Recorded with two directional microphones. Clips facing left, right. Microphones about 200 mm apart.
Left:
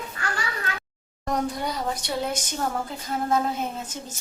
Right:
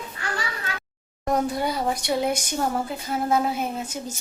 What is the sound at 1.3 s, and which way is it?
A woman's voice, 5° right (ahead or behind).